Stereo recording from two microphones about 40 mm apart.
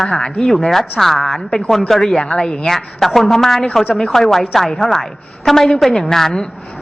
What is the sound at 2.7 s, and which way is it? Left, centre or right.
A woman's voice, centre.